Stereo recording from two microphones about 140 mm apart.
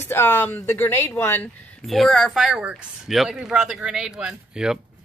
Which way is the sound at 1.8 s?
Centre (ahead or behind).